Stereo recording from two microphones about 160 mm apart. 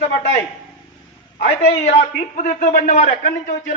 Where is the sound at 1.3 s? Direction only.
90° left.